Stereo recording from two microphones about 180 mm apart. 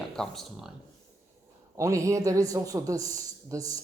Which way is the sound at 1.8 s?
15° right (ahead or behind).